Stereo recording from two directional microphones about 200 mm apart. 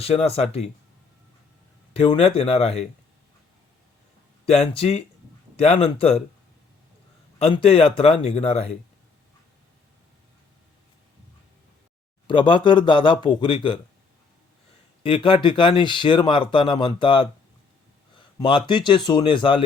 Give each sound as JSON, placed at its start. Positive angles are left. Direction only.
{"t": 0.0, "sound": "speech", "side_deg": 30}
{"t": 1.9, "sound": "speech", "side_deg": 30}
{"t": 4.4, "sound": "speech", "side_deg": 30}
{"t": 7.3, "sound": "speech", "side_deg": 30}
{"t": 12.3, "sound": "speech", "side_deg": 25}
{"t": 15.0, "sound": "speech", "side_deg": 25}